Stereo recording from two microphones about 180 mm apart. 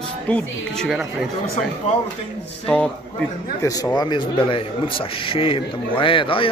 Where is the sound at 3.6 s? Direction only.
20° left (ahead or behind).